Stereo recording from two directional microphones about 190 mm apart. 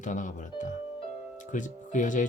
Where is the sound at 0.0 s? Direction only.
40° left (ahead or behind).